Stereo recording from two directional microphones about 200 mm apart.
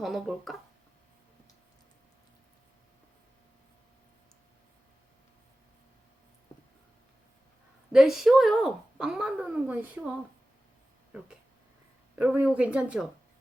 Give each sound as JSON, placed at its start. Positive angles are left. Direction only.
{"t": 0.0, "sound": "speech", "side_deg": 0}
{"t": 7.9, "sound": "speech", "side_deg": 0}
{"t": 12.1, "sound": "speech", "side_deg": -10}